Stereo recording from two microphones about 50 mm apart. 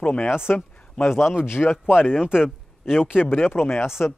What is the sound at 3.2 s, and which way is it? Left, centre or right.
Speech, left.